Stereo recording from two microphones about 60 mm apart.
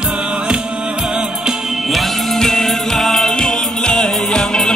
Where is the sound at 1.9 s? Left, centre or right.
Centre.